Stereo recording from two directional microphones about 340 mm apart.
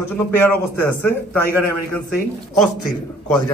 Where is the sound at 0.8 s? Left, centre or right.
Centre.